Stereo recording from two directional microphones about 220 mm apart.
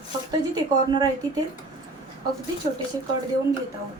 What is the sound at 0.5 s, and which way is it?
Speech, 20° right (ahead or behind).